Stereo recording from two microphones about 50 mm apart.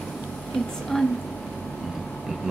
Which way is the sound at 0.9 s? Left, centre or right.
Centre.